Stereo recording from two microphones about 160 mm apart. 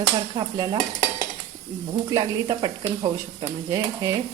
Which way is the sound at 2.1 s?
30° right (ahead or behind).